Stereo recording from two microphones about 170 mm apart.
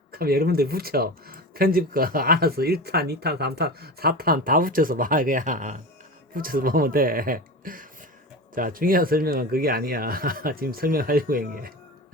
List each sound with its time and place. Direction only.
0.1 s speech: 60° right (ahead or behind)